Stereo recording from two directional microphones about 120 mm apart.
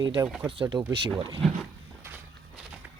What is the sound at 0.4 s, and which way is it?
Speech, 40° right (ahead or behind).